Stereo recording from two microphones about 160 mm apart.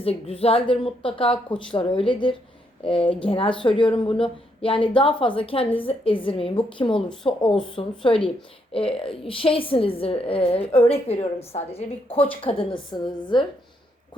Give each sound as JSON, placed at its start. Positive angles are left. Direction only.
{"t": 0.0, "sound": "speech", "side_deg": 40}